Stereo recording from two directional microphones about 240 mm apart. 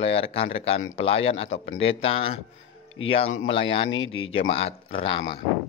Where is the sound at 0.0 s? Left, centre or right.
Left.